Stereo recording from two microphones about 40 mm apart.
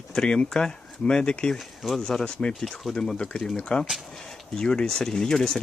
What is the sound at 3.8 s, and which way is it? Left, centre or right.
Speech, centre.